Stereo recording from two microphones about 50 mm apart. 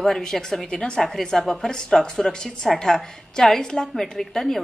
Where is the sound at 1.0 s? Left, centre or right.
Centre.